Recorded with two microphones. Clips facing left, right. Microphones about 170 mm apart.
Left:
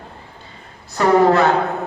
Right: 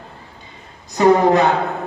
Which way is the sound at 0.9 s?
15° right (ahead or behind).